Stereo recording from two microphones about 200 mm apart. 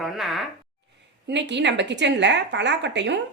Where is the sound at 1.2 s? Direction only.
60° right (ahead or behind).